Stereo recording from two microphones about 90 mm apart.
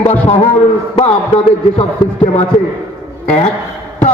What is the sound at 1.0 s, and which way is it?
Music, 90° left.